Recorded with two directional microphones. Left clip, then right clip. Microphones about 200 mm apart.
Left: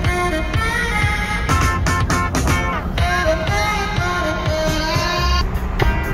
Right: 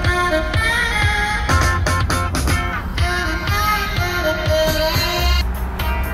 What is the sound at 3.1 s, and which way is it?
Music, 45° left (ahead or behind).